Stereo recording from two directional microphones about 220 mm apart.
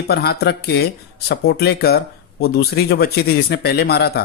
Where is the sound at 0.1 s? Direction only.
45° left (ahead or behind).